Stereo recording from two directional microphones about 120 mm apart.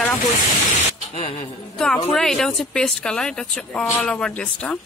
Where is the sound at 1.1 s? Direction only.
70° left (ahead or behind).